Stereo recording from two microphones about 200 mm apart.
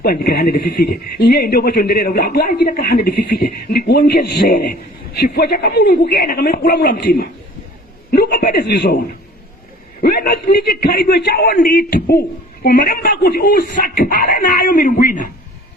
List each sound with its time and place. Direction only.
0.0 s a man's voice: 50° left (ahead or behind)
10.0 s a man's voice: 50° left (ahead or behind)